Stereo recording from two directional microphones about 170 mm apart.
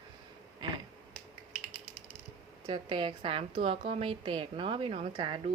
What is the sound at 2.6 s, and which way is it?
A woman's voice, 30° right (ahead or behind).